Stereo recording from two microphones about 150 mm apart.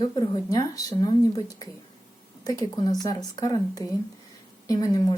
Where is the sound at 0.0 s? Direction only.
25° left (ahead or behind).